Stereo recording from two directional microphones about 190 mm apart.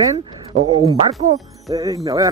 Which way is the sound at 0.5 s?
35° right (ahead or behind).